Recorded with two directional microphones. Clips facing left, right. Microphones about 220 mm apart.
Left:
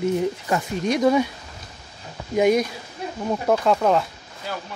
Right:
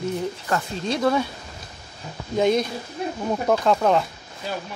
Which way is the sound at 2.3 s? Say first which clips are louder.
Left 2 dB; 15° left (ahead or behind).